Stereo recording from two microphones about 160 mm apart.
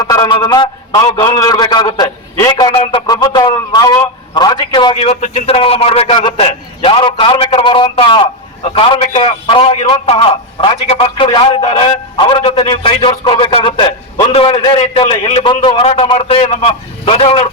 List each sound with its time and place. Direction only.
0.0 s a man's voice: 25° left (ahead or behind)